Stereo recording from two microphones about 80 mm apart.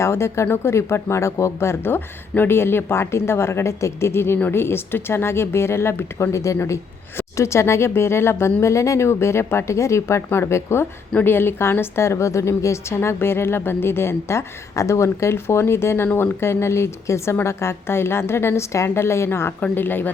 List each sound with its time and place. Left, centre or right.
0.0 s a woman's voice: left